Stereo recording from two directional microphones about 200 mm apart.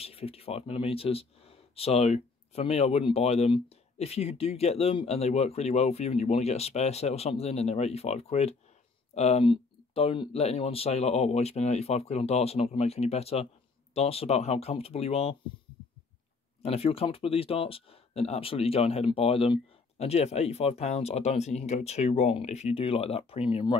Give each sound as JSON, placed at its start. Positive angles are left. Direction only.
{"t": 0.0, "sound": "speech", "side_deg": 30}
{"t": 16.6, "sound": "speech", "side_deg": 30}